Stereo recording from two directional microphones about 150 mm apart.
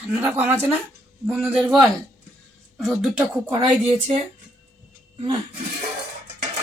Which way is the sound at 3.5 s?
25° right (ahead or behind).